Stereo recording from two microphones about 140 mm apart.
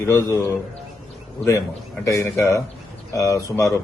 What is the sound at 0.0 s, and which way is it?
Speech, 20° left (ahead or behind).